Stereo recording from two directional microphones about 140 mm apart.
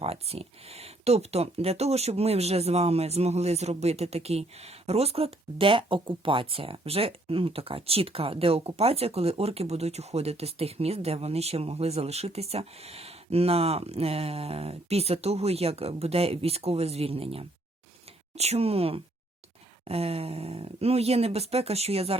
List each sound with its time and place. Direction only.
0.0 s speech: 45° right (ahead or behind)